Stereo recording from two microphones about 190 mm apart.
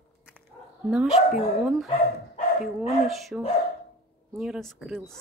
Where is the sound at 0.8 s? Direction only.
5° right (ahead or behind).